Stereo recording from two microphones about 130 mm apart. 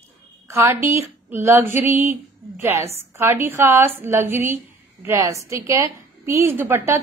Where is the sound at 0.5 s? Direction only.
20° right (ahead or behind).